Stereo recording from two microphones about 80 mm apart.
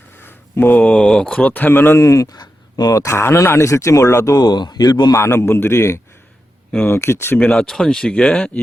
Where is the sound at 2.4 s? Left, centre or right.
Left.